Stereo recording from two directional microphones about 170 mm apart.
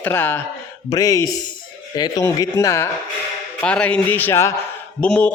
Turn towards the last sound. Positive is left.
turn(degrees=5)  # may be behind; listen again after turning